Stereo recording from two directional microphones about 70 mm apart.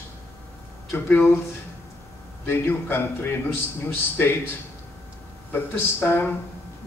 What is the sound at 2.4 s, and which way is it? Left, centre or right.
A man's voice, left.